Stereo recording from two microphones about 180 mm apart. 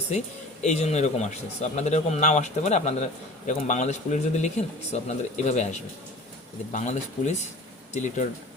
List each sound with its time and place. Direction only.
0.6 s speech: 40° left (ahead or behind)